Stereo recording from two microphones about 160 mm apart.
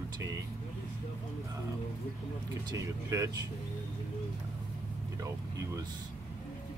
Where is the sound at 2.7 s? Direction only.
20° right (ahead or behind).